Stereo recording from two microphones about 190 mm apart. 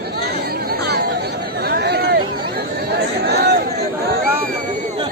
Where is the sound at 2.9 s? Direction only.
60° right (ahead or behind).